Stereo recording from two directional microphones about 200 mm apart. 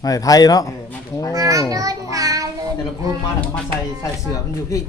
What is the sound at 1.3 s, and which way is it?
A child's voice, 15° right (ahead or behind).